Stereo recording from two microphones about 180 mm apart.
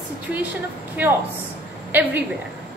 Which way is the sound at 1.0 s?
10° right (ahead or behind).